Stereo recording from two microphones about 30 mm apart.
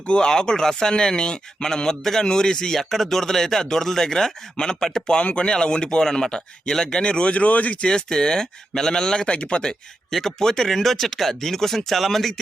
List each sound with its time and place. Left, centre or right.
0.3 s speech: left
2.7 s speech: centre
5.2 s speech: left
5.5 s speech: left
7.0 s speech: left
7.9 s speech: left
9.2 s speech: left
10.1 s speech: centre